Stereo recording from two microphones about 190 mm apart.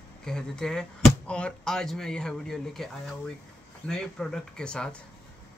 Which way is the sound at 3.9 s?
5° left (ahead or behind).